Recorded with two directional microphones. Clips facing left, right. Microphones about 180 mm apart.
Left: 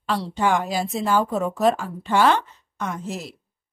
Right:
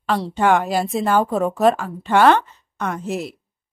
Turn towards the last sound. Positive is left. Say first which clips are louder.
# right 5 dB
turn(degrees=-60)  # may be behind; listen again after turning